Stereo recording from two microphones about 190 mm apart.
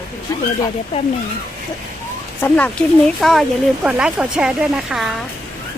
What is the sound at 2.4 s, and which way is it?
Speech, 10° left (ahead or behind).